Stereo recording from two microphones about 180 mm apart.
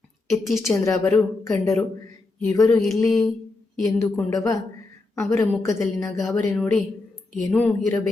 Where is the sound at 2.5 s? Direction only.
20° left (ahead or behind).